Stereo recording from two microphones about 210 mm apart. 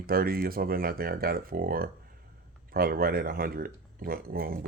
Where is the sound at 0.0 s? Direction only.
45° right (ahead or behind).